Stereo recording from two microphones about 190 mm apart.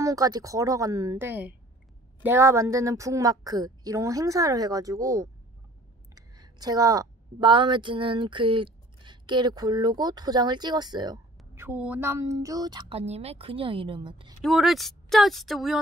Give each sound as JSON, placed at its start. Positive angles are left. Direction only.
{"t": 0.0, "sound": "a woman's voice", "side_deg": -20}
{"t": 13.0, "sound": "a woman's voice", "side_deg": -35}
{"t": 14.4, "sound": "speech", "side_deg": 0}